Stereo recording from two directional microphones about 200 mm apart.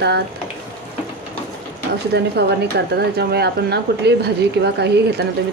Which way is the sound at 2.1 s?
55° right (ahead or behind).